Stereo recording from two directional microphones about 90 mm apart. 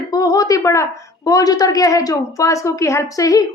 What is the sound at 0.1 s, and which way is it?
A woman's voice, 45° left (ahead or behind).